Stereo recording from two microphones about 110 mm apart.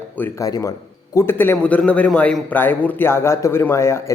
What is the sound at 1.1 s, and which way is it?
A man's voice, 20° left (ahead or behind).